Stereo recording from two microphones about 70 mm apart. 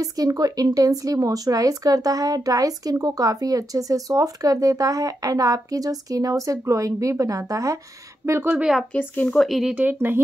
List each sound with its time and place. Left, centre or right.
0.0 s a woman's voice: right
8.5 s speech: centre
8.9 s speech: left
9.3 s a woman's voice: centre
9.9 s speech: right